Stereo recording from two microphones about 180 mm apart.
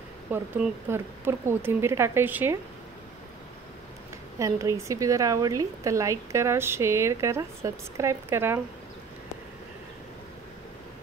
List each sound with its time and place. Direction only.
0.3 s a woman's voice: 15° right (ahead or behind)
4.4 s a woman's voice: 15° right (ahead or behind)